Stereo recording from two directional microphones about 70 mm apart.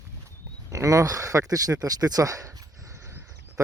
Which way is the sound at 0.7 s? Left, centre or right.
Right.